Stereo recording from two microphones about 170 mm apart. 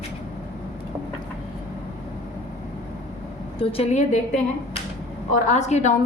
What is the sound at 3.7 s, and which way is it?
Speech, 40° left (ahead or behind).